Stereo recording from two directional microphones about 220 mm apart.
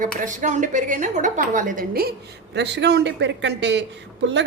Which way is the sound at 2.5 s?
50° right (ahead or behind).